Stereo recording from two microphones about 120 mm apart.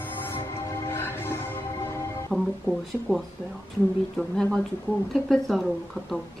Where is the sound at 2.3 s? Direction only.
Centre (ahead or behind).